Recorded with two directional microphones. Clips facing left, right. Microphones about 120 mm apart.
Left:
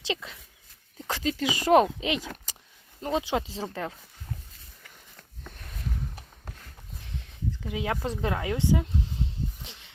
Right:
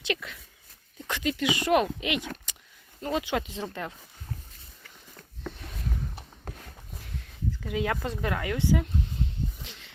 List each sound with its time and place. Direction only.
0.0 s speech: 25° left (ahead or behind)
1.0 s speech: 35° left (ahead or behind)
7.6 s speech: 20° left (ahead or behind)